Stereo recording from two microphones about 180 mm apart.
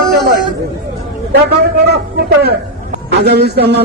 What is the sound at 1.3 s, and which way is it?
A man's voice, 65° right (ahead or behind).